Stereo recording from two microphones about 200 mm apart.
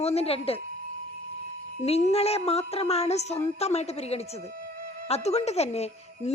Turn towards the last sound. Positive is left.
turn(degrees=30)  # may be behind; listen again after turning